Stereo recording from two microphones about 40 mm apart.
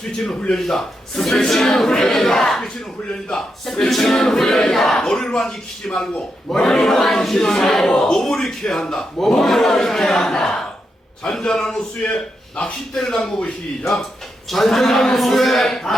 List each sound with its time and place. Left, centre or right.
0.2 s speech: centre
7.9 s a man's voice: centre
12.0 s a man's voice: left
12.9 s speech: centre
14.5 s speech: centre